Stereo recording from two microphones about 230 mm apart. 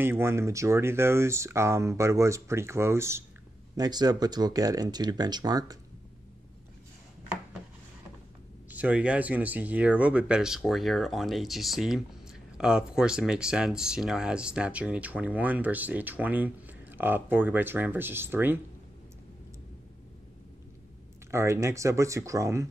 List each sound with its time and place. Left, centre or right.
0.0 s speech: centre
8.6 s speech: centre
21.3 s speech: centre